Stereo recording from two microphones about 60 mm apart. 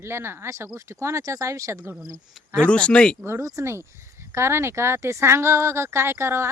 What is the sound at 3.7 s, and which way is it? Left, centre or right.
Speech, right.